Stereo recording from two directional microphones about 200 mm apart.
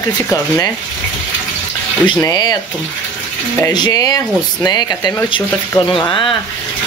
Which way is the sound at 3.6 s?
20° left (ahead or behind).